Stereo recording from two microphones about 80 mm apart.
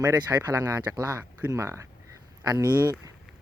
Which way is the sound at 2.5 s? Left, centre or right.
Right.